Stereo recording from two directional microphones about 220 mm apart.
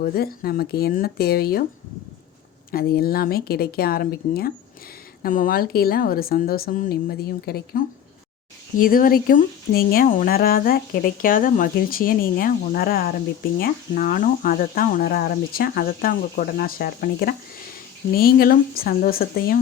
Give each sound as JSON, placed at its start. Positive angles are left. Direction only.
{"t": 0.0, "sound": "a woman's voice", "side_deg": 45}
{"t": 2.7, "sound": "a woman's voice", "side_deg": 40}